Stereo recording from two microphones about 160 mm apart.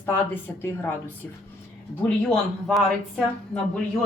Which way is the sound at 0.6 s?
15° left (ahead or behind).